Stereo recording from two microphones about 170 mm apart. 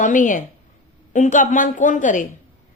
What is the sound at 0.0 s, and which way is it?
A woman's voice, 50° left (ahead or behind).